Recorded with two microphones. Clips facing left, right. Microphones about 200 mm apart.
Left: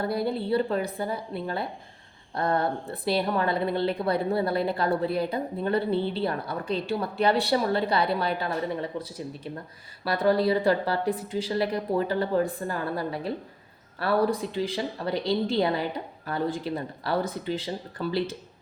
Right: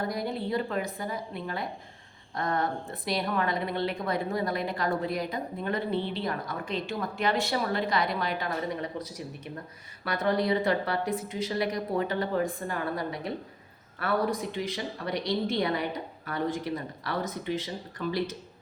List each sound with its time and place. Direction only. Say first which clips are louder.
0.1 s a woman's voice: left 5 dB; 30° left (ahead or behind)
10.0 s a woman's voice: left 4 dB; 30° left (ahead or behind)